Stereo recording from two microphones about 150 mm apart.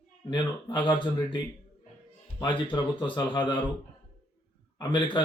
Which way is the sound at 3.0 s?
30° left (ahead or behind).